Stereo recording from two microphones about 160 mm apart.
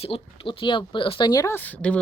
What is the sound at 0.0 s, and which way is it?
Speech, 35° left (ahead or behind).